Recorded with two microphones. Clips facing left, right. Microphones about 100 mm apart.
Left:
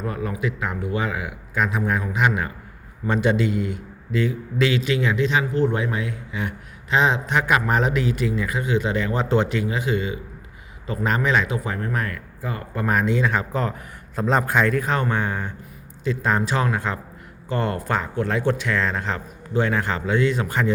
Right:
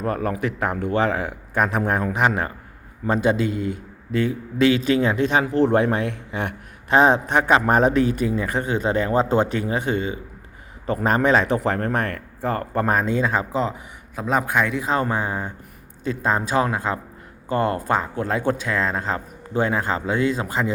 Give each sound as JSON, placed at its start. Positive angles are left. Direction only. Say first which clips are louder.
{"t": 0.0, "sound": "a man's voice", "louder": "right 3 dB", "side_deg": -50}
{"t": 0.9, "sound": "a man's voice", "louder": "right 5 dB", "side_deg": -40}
{"t": 2.1, "sound": "a man's voice", "louder": "right 1 dB", "side_deg": -35}
{"t": 6.9, "sound": "a man's voice", "louder": "right 4 dB", "side_deg": -45}
{"t": 9.9, "sound": "speech", "louder": "even", "side_deg": -30}
{"t": 10.8, "sound": "speech", "louder": "right 4 dB", "side_deg": -45}
{"t": 11.4, "sound": "speech", "louder": "right 5 dB", "side_deg": -60}
{"t": 12.9, "sound": "speech", "louder": "left 1 dB", "side_deg": -35}
{"t": 14.2, "sound": "a man's voice", "louder": "left 1 dB", "side_deg": -5}
{"t": 14.8, "sound": "speech", "louder": "right 1 dB", "side_deg": -30}